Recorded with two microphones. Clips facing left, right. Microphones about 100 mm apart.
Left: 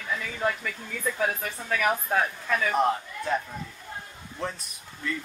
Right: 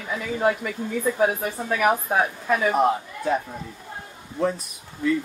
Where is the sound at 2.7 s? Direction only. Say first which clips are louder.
Right 4 dB; 10° right (ahead or behind).